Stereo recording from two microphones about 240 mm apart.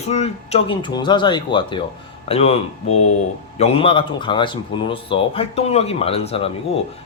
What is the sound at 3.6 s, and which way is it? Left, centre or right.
Speech, left.